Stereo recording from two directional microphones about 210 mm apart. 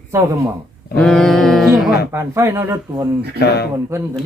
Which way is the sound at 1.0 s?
Centre (ahead or behind).